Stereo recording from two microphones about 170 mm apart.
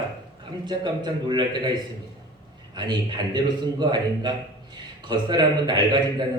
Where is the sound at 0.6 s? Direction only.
25° right (ahead or behind).